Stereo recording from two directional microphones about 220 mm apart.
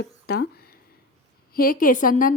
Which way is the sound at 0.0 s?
45° left (ahead or behind).